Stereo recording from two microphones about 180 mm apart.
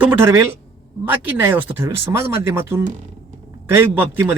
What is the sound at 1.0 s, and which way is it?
Speech, 10° right (ahead or behind).